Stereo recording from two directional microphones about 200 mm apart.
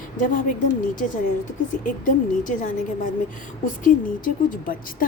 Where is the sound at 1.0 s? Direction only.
40° left (ahead or behind).